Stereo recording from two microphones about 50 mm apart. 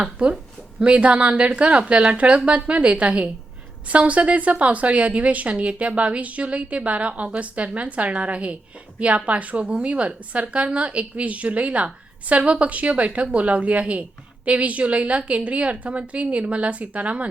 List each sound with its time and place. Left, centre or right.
0.2 s speech: centre